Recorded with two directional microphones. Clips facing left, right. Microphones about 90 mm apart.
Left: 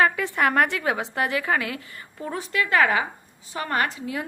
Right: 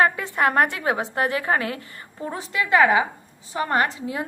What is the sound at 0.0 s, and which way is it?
A woman's voice, 30° right (ahead or behind).